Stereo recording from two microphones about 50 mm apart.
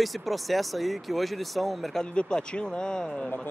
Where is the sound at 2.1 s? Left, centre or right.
Centre.